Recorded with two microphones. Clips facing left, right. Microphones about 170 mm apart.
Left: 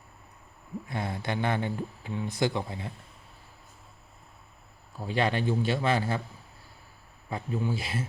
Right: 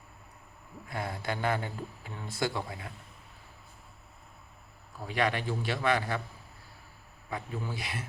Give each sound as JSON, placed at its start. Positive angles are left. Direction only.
{"t": 0.9, "sound": "speech", "side_deg": 20}
{"t": 5.0, "sound": "speech", "side_deg": 25}
{"t": 7.3, "sound": "speech", "side_deg": 25}